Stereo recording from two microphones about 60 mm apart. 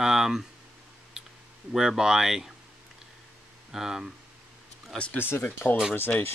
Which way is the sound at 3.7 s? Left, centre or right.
Centre.